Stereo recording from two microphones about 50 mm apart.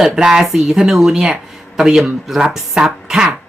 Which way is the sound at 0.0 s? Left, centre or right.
Centre.